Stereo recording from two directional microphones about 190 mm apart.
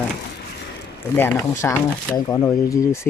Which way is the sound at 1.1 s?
15° left (ahead or behind).